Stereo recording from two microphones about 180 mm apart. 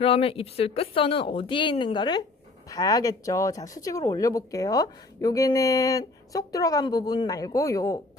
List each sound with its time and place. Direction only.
0.0 s speech: 30° left (ahead or behind)